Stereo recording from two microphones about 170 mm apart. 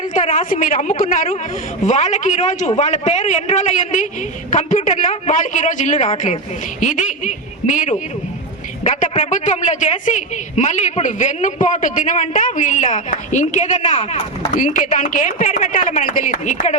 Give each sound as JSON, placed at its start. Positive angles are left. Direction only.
{"t": 0.1, "sound": "a man's voice", "side_deg": 45}